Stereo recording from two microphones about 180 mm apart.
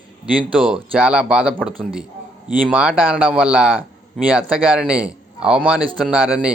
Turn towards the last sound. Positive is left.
turn(degrees=-5)  # may be behind; listen again after turning